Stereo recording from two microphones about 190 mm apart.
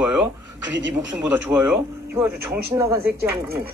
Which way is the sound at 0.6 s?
70° right (ahead or behind).